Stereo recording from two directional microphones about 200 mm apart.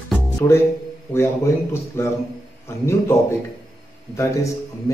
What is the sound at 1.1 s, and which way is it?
Speech, 10° left (ahead or behind).